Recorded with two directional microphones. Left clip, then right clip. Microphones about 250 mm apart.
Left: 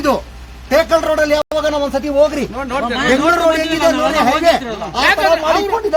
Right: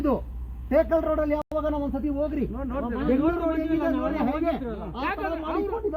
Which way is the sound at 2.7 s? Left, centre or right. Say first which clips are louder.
Left 13 dB; left.